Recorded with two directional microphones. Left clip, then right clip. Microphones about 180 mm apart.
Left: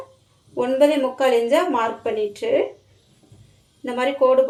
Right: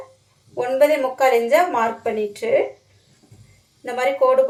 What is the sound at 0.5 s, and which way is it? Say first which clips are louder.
Speech: right 1 dB; 20° left (ahead or behind).